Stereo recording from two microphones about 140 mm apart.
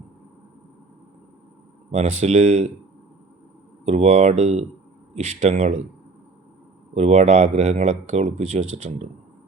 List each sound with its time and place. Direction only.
1.9 s speech: 50° right (ahead or behind)
3.8 s speech: 50° right (ahead or behind)
6.9 s speech: 50° right (ahead or behind)